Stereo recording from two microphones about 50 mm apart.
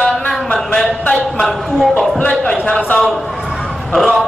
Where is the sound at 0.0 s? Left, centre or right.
Centre.